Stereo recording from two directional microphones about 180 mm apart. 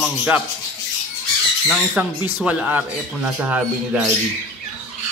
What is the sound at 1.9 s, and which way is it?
Speech, 10° right (ahead or behind).